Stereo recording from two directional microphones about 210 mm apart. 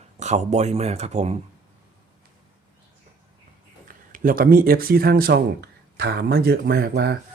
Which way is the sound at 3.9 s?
40° right (ahead or behind).